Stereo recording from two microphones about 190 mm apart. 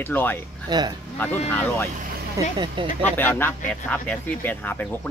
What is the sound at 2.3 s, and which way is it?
Speech, 25° right (ahead or behind).